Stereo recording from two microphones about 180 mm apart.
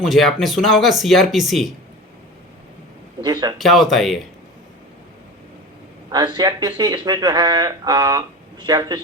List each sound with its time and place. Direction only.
0.0 s speech: centre (ahead or behind)
3.6 s speech: centre (ahead or behind)
6.1 s speech: 20° right (ahead or behind)